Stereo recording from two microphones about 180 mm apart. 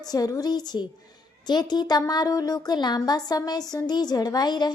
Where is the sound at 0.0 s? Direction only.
20° left (ahead or behind).